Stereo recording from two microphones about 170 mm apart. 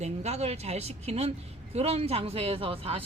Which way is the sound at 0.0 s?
40° right (ahead or behind).